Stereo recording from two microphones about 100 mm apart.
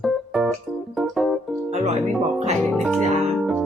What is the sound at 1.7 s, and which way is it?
Music, 90° right.